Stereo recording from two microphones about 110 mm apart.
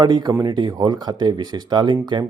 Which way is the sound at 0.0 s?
40° right (ahead or behind).